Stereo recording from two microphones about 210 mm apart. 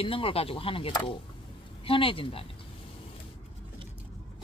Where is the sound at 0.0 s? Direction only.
25° left (ahead or behind).